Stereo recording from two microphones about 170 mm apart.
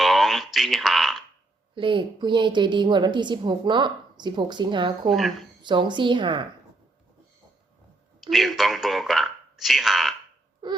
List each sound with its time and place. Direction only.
0.0 s a sound: centre (ahead or behind)
1.7 s a woman's voice: 30° right (ahead or behind)
5.0 s speech: centre (ahead or behind)
5.6 s a woman's voice: 25° right (ahead or behind)
8.2 s speech: centre (ahead or behind)
10.6 s a sound: 25° right (ahead or behind)